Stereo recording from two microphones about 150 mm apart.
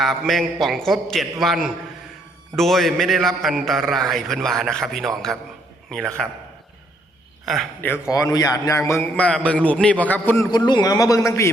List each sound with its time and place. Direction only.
0.0 s a man's voice: centre (ahead or behind)
7.4 s a man's voice: centre (ahead or behind)
8.1 s a man's voice: 25° left (ahead or behind)
10.5 s a man's voice: 30° left (ahead or behind)